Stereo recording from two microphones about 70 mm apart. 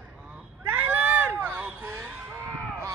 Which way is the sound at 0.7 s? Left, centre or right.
Right.